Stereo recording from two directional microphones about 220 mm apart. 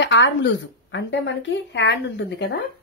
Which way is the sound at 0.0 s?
55° left (ahead or behind).